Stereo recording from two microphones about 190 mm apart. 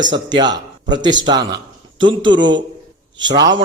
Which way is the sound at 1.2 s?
20° right (ahead or behind).